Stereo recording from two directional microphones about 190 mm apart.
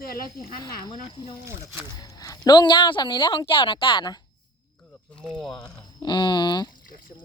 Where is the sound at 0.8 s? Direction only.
30° left (ahead or behind).